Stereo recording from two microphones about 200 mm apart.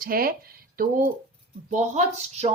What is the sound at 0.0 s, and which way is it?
Speech, 45° right (ahead or behind).